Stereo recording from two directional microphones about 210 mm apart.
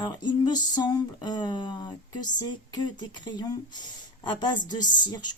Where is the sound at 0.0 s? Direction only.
20° left (ahead or behind).